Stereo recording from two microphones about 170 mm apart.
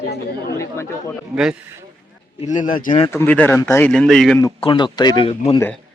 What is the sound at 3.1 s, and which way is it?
Speech, 15° left (ahead or behind).